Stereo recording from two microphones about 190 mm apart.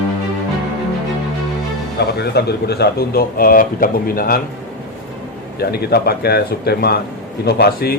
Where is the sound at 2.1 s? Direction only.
60° left (ahead or behind).